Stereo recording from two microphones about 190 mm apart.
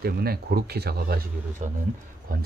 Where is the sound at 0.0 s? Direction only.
55° right (ahead or behind).